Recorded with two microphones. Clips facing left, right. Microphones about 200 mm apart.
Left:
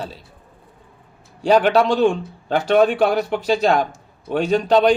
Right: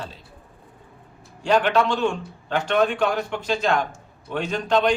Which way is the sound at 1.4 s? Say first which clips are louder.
Left 5 dB; 35° left (ahead or behind).